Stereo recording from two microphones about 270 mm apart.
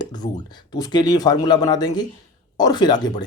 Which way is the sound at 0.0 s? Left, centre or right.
Centre.